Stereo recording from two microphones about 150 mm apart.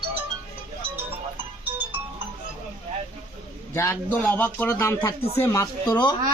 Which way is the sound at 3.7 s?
15° left (ahead or behind).